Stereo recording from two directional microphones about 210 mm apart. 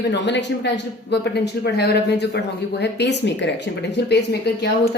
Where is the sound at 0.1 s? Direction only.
55° left (ahead or behind).